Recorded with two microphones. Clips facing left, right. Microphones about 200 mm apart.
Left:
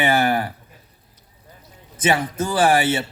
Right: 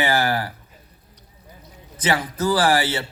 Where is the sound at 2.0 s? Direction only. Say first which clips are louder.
Left 2 dB; 25° left (ahead or behind).